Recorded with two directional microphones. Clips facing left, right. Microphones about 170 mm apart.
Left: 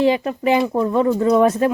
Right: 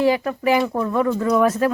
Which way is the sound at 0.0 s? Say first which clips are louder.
Left 1 dB; 20° left (ahead or behind).